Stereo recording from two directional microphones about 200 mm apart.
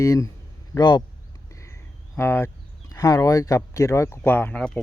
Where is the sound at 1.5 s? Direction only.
15° left (ahead or behind).